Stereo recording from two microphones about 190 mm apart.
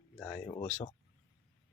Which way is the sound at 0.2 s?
5° left (ahead or behind).